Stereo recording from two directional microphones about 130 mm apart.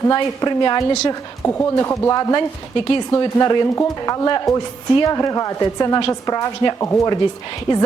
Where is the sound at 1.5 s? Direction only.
20° left (ahead or behind).